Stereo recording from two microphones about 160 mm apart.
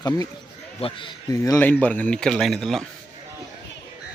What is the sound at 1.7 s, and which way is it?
Speech, 10° left (ahead or behind).